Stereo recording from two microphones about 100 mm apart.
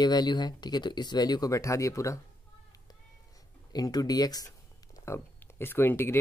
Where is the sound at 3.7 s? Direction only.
40° left (ahead or behind).